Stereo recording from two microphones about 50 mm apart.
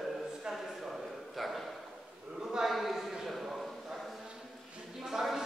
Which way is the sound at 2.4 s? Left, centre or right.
Centre.